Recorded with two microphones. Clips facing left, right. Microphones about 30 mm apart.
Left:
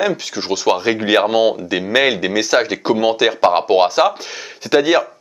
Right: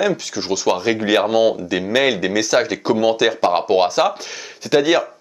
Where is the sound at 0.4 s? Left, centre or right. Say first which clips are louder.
Left 3 dB; centre.